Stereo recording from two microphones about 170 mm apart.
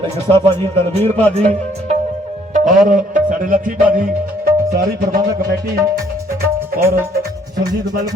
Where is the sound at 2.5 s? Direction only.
50° right (ahead or behind).